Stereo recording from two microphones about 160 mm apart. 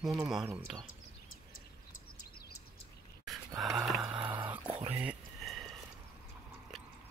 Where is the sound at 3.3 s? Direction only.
Centre (ahead or behind).